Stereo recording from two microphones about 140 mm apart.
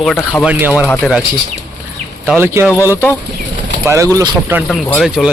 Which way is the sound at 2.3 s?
15° right (ahead or behind).